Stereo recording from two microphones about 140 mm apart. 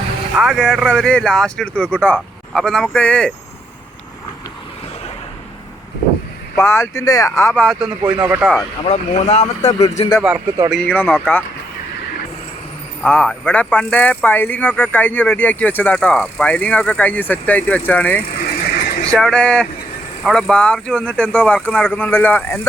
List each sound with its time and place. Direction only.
0.3 s speech: centre (ahead or behind)
6.6 s speech: 20° left (ahead or behind)
7.5 s speech: 5° left (ahead or behind)
7.8 s speech: 10° right (ahead or behind)
8.8 s speech: 50° left (ahead or behind)
10.7 s speech: 10° left (ahead or behind)
13.0 s speech: 5° left (ahead or behind)
18.3 s vehicle: 90° left
19.0 s speech: 5° left (ahead or behind)